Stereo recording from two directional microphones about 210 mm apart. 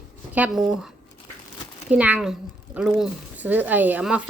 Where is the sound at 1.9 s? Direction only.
5° right (ahead or behind).